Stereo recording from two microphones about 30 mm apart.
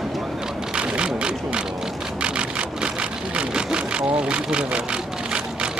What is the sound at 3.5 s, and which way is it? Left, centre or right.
Vehicle, right.